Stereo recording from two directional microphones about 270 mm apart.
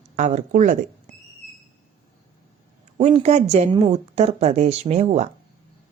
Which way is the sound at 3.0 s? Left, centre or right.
Right.